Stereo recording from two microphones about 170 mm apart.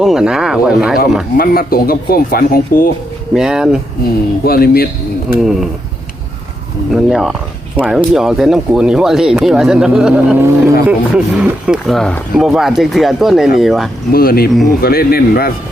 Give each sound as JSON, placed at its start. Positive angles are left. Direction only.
{"t": 0.0, "sound": "speech", "side_deg": -5}
{"t": 1.4, "sound": "speech", "side_deg": 60}
{"t": 3.3, "sound": "speech", "side_deg": -5}
{"t": 4.4, "sound": "speech", "side_deg": 60}
{"t": 5.4, "sound": "speech", "side_deg": 0}
{"t": 6.9, "sound": "speech", "side_deg": 0}
{"t": 14.1, "sound": "speech", "side_deg": 60}